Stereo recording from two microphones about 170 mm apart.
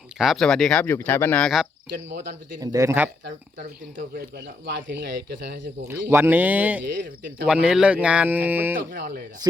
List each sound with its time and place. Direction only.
0.2 s speech: centre (ahead or behind)
2.6 s speech: 20° right (ahead or behind)
4.6 s speech: 90° right
5.9 s speech: 10° right (ahead or behind)
8.9 s speech: 55° right (ahead or behind)
9.4 s speech: 25° right (ahead or behind)